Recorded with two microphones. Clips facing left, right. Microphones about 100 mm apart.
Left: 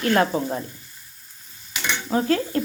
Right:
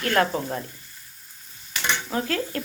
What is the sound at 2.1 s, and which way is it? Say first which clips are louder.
Speech: left 10 dB; 25° left (ahead or behind).